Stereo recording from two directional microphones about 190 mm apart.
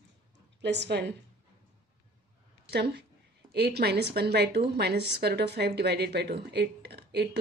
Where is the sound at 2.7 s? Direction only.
60° right (ahead or behind).